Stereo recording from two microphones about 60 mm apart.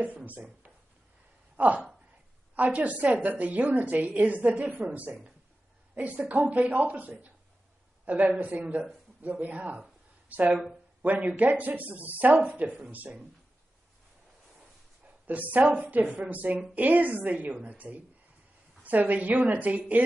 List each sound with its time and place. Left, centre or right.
0.0 s a woman's voice: right
2.5 s a woman's voice: right
15.0 s a sound: right
15.7 s a woman's voice: right